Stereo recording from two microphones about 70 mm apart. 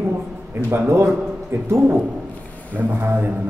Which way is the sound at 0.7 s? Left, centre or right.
Right.